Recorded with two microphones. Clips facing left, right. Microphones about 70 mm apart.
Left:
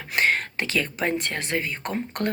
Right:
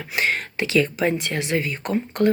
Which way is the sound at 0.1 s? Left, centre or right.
Left.